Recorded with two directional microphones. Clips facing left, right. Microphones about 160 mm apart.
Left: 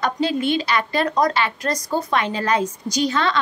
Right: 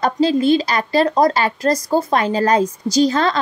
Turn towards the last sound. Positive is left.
turn(degrees=-40)  # may be behind; listen again after turning